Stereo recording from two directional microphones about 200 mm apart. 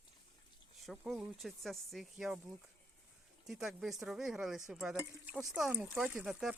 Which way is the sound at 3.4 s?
Centre (ahead or behind).